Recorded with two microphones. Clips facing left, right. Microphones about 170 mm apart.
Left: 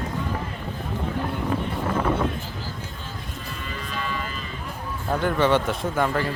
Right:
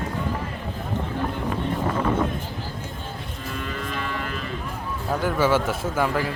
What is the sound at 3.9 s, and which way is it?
Cattle, 60° right (ahead or behind).